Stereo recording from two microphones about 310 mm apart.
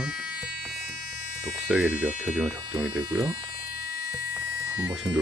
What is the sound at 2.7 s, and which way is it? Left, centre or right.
Speech, right.